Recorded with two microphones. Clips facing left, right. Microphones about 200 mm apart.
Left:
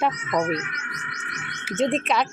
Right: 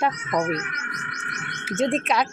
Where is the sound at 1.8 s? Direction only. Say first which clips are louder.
Even; centre (ahead or behind).